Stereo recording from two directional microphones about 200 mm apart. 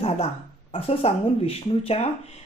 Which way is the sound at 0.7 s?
30° left (ahead or behind).